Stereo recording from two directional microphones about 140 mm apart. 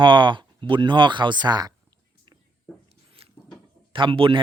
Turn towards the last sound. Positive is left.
turn(degrees=-40)  # may be behind; listen again after turning